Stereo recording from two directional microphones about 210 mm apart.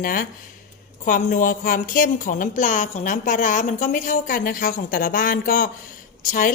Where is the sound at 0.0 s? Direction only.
40° left (ahead or behind).